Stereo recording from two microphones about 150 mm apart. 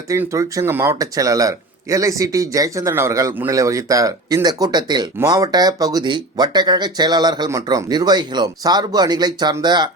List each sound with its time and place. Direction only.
0.1 s speech: 20° right (ahead or behind)